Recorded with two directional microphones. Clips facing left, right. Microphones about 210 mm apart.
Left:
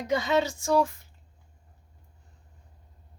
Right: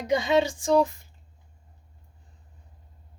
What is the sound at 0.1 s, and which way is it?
Speech, 15° right (ahead or behind).